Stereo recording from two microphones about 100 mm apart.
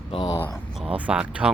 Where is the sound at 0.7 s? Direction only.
10° right (ahead or behind).